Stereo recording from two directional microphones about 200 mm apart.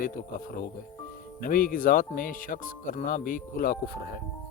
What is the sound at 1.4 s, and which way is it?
Speech, 45° left (ahead or behind).